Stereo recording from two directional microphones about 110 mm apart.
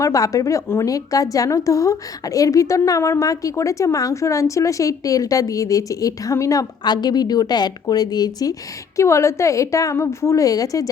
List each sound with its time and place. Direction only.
0.0 s a woman's voice: 30° left (ahead or behind)